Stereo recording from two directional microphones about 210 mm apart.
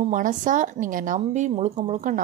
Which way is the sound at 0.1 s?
40° right (ahead or behind).